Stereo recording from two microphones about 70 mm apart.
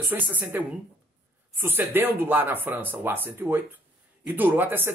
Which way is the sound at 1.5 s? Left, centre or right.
Right.